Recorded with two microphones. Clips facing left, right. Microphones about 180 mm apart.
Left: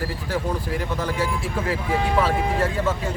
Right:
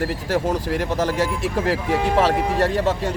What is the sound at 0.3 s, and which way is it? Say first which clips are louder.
Speech: right 4 dB; 40° right (ahead or behind).